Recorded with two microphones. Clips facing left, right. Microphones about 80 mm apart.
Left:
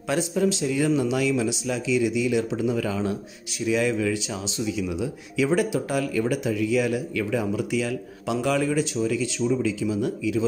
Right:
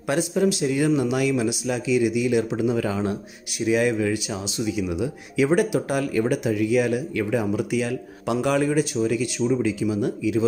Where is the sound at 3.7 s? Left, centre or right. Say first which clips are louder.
Right 2 dB; right.